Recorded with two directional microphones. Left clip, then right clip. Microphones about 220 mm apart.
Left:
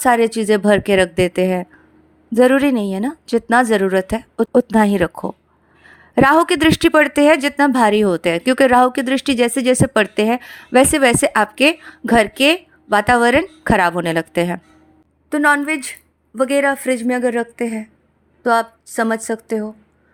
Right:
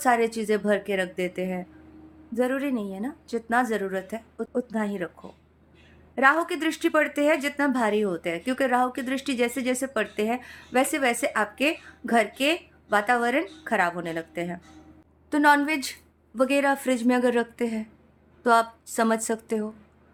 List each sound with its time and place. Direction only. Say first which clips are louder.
0.0 s a woman's voice: left 8 dB; 40° left (ahead or behind)
15.3 s a woman's voice: left 5 dB; 20° left (ahead or behind)